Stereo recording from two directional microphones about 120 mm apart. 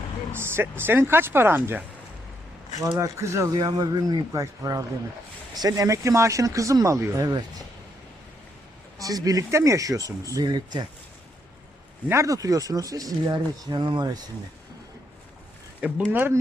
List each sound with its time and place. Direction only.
0.3 s speech: 20° right (ahead or behind)
3.0 s speech: 25° right (ahead or behind)
3.5 s speech: 35° right (ahead or behind)
7.3 s speech: 35° right (ahead or behind)
9.0 s speech: 30° right (ahead or behind)
12.0 s speech: 25° right (ahead or behind)
16.1 s speech: 20° right (ahead or behind)